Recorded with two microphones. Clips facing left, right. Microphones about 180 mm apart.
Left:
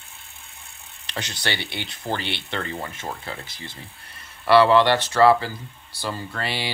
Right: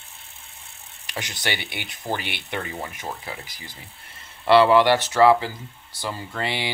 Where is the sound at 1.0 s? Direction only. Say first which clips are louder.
Even; 15° right (ahead or behind).